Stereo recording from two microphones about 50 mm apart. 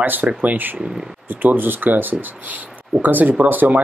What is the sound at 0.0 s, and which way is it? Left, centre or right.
Speech, right.